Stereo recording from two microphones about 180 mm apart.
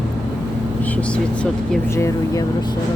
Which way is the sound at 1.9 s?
15° left (ahead or behind).